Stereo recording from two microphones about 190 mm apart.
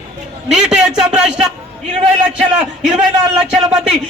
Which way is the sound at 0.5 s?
5° right (ahead or behind).